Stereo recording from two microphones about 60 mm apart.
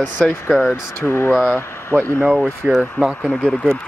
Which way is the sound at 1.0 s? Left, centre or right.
Left.